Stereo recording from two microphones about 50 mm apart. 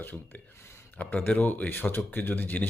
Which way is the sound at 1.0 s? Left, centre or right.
Left.